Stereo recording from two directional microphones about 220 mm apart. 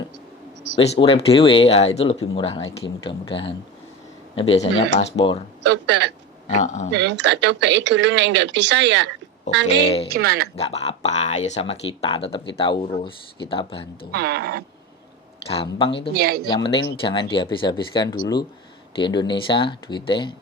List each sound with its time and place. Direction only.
0.8 s speech: 25° left (ahead or behind)
5.6 s speech: 55° right (ahead or behind)
6.5 s a man's voice: 30° left (ahead or behind)
6.9 s speech: 50° right (ahead or behind)
10.1 s speech: 45° right (ahead or behind)
10.5 s speech: 30° left (ahead or behind)
14.1 s speech: 45° right (ahead or behind)
15.4 s speech: 25° left (ahead or behind)
16.1 s speech: 45° right (ahead or behind)
16.6 s speech: 25° left (ahead or behind)